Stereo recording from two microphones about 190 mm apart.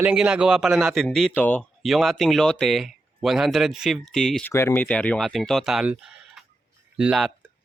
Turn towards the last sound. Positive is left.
turn(degrees=-5)  # may be behind; listen again after turning